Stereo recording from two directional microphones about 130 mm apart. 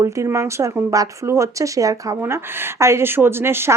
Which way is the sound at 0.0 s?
20° right (ahead or behind).